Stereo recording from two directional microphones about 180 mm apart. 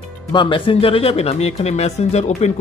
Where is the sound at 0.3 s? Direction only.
25° left (ahead or behind).